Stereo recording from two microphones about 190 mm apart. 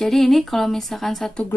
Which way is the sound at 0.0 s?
Centre (ahead or behind).